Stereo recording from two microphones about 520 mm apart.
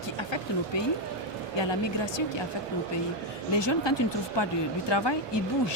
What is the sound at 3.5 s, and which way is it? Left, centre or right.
Speech, left.